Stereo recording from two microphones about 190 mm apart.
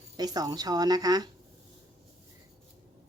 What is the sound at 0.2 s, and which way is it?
Speech, 20° right (ahead or behind).